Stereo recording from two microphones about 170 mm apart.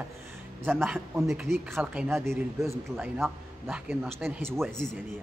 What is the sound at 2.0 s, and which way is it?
A man's voice, 15° right (ahead or behind).